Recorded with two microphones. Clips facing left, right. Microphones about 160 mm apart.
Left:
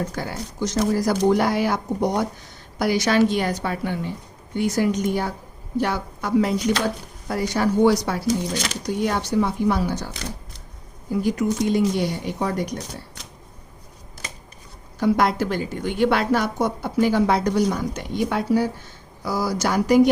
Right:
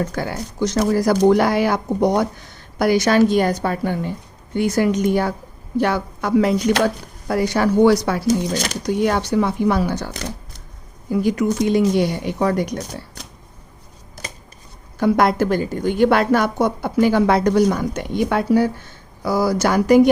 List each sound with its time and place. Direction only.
0.1 s speech: 65° right (ahead or behind)
2.7 s a woman's voice: 55° right (ahead or behind)
4.5 s speech: 60° right (ahead or behind)
8.5 s a woman's voice: 45° right (ahead or behind)
9.0 s speech: 70° right (ahead or behind)
11.7 s speech: 70° right (ahead or behind)
14.9 s a woman's voice: 55° right (ahead or behind)